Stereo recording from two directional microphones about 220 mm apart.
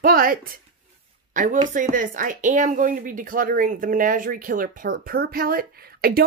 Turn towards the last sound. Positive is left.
turn(degrees=-45)  # may be behind; listen again after turning